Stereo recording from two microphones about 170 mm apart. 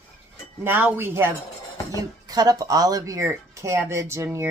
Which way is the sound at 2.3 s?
20° right (ahead or behind).